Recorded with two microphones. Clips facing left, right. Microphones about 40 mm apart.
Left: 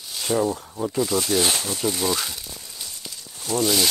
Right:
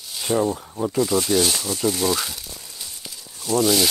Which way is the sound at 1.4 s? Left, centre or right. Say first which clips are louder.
Even; left.